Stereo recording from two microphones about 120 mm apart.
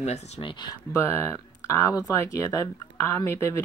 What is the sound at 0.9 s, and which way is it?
Speech, 20° left (ahead or behind).